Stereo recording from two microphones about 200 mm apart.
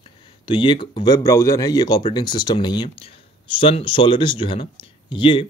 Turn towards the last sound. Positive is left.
turn(degrees=25)  # may be behind; listen again after turning